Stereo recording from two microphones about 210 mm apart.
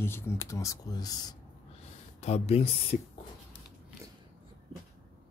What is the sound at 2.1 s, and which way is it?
Speech, 30° left (ahead or behind).